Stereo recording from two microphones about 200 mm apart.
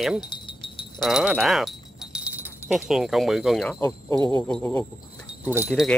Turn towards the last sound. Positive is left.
turn(degrees=5)  # may be behind; listen again after turning